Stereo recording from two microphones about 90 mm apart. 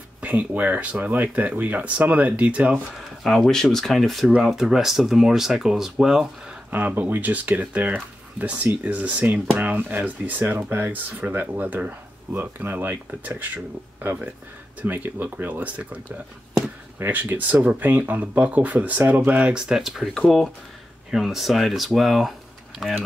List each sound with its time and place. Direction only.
0.2 s speech: 15° right (ahead or behind)
3.0 s speech: centre (ahead or behind)
6.7 s speech: 20° right (ahead or behind)
14.8 s speech: 20° right (ahead or behind)
17.0 s speech: 20° right (ahead or behind); by 23.0 s 5° left (ahead or behind)